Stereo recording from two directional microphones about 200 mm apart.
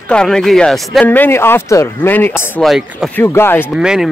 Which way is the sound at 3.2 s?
10° left (ahead or behind).